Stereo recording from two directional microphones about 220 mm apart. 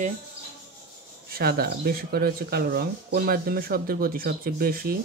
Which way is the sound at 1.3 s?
45° right (ahead or behind).